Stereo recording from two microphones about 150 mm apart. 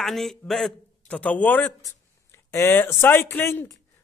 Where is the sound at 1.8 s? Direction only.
20° left (ahead or behind).